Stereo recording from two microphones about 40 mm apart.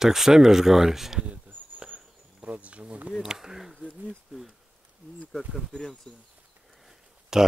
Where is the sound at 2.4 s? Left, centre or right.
Right.